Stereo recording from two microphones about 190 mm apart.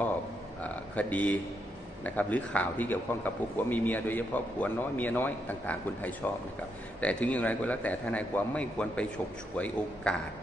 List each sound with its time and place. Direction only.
0.6 s a sound: 10° left (ahead or behind)
2.0 s a man's voice: 10° left (ahead or behind)
10.1 s speech: 5° left (ahead or behind)